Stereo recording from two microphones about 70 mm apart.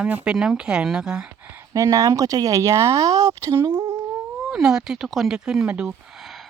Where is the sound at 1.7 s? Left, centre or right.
Right.